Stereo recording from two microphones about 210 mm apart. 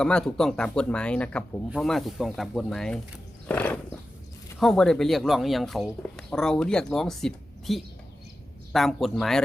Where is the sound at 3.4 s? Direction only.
5° left (ahead or behind).